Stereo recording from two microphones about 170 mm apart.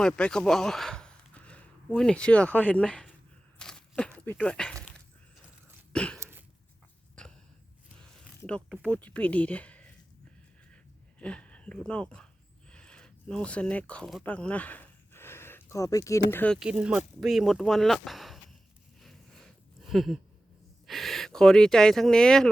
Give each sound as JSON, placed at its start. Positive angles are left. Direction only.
{"t": 0.0, "sound": "speech", "side_deg": 5}
{"t": 3.6, "sound": "walk", "side_deg": 5}
{"t": 5.9, "sound": "a sound", "side_deg": 5}
{"t": 7.2, "sound": "a sound", "side_deg": 5}
{"t": 8.4, "sound": "speech", "side_deg": 5}
{"t": 11.2, "sound": "speech", "side_deg": 5}
{"t": 16.6, "sound": "speech", "side_deg": -5}
{"t": 18.9, "sound": "a sound", "side_deg": 0}
{"t": 20.8, "sound": "speech", "side_deg": 0}